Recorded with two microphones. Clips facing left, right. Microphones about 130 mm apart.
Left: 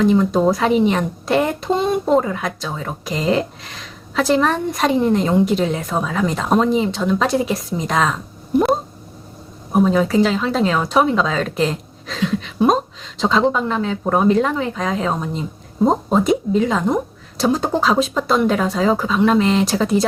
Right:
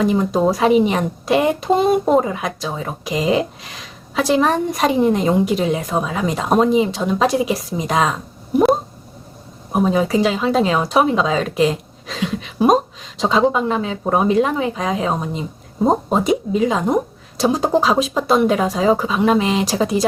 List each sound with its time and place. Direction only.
0.3 s a woman's voice: 10° right (ahead or behind)
9.8 s a woman's voice: 10° right (ahead or behind)